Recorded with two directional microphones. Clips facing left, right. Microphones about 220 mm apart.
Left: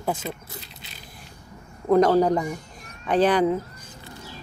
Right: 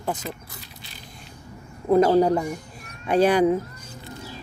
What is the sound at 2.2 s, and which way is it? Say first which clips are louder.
Speech: right 1 dB; 10° right (ahead or behind).